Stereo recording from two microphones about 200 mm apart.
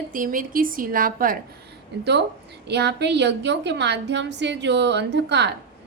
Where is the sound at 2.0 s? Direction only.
60° right (ahead or behind).